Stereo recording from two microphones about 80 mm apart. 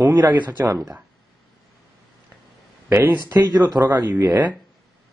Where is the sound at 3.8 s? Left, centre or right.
Right.